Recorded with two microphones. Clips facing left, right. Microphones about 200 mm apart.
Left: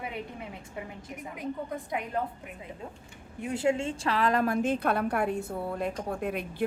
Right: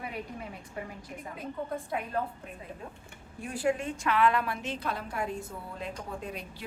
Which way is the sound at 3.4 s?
25° left (ahead or behind).